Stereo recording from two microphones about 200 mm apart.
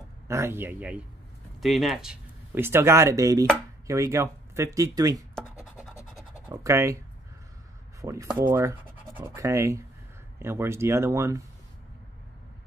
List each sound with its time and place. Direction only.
0.3 s speech: 10° right (ahead or behind)
6.1 s scratch: 10° right (ahead or behind)
8.0 s speech: 15° right (ahead or behind)